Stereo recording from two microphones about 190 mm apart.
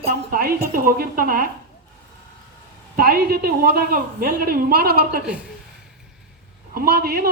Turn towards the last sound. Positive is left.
turn(degrees=-55)  # may be behind; listen again after turning